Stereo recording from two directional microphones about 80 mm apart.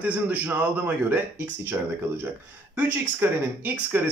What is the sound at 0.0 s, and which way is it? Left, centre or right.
Speech, centre.